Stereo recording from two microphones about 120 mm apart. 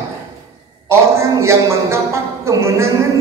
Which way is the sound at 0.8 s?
25° right (ahead or behind).